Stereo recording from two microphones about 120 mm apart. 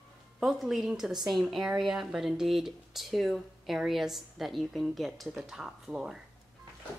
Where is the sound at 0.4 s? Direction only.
Centre (ahead or behind).